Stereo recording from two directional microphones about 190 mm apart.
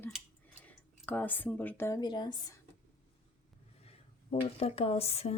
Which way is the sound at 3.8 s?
30° left (ahead or behind).